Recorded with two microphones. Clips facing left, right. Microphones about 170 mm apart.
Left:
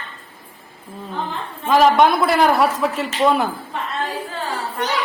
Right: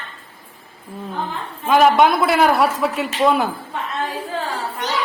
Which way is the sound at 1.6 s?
5° right (ahead or behind).